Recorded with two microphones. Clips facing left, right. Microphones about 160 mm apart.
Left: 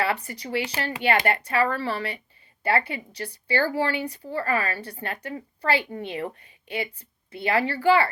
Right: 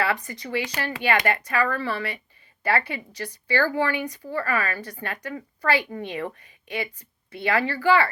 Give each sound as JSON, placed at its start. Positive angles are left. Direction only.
{"t": 0.0, "sound": "speech", "side_deg": 30}